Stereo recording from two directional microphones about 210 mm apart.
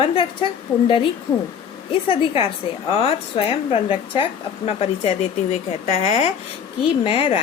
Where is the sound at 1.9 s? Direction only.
25° left (ahead or behind).